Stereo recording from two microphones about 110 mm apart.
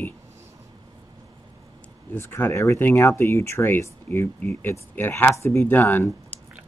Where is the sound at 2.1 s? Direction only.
20° left (ahead or behind).